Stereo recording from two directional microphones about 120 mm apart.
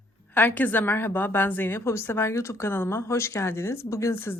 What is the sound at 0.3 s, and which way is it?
A woman's voice, 15° left (ahead or behind).